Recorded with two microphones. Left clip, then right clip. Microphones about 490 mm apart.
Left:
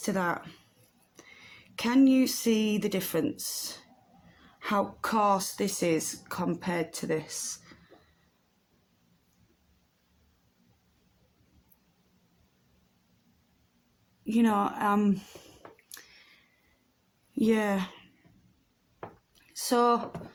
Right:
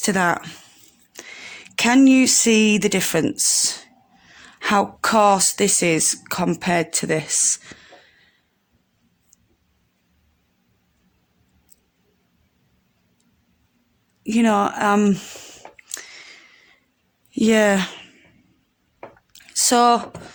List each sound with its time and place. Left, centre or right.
0.0 s speech: centre
14.3 s speech: left
15.9 s a sound: centre
17.3 s speech: centre
19.4 s speech: centre